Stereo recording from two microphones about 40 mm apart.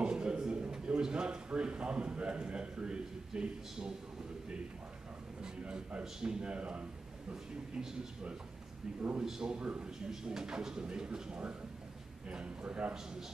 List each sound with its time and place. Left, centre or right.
0.0 s a man's voice: right
5.4 s a sound: right
6.2 s speech: right
9.2 s speech: centre